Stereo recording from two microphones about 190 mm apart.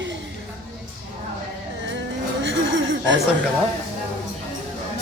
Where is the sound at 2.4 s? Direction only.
80° right.